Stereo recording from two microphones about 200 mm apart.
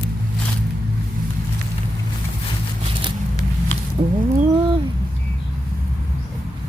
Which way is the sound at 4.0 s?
40° right (ahead or behind).